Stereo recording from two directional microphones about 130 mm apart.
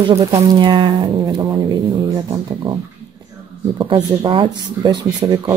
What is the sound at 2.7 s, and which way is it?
Speech, 40° right (ahead or behind).